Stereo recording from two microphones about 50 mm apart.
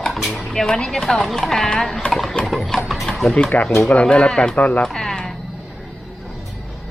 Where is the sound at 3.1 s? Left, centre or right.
Centre.